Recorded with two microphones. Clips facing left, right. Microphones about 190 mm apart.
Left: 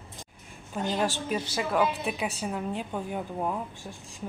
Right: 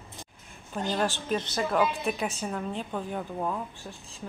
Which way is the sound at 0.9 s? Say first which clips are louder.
Right 1 dB; 10° left (ahead or behind).